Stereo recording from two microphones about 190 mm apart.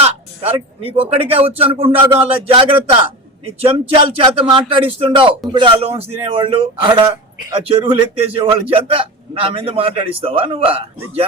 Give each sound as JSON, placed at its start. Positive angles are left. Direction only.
{"t": 0.0, "sound": "speech", "side_deg": -30}
{"t": 8.4, "sound": "speech", "side_deg": -30}